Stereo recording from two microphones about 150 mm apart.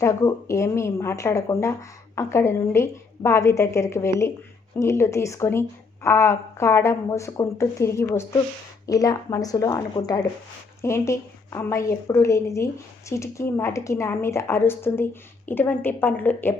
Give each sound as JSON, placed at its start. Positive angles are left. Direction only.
{"t": 0.0, "sound": "a woman's voice", "side_deg": 20}